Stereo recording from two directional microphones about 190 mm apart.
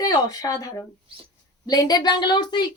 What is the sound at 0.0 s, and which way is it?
A woman's voice, 20° left (ahead or behind).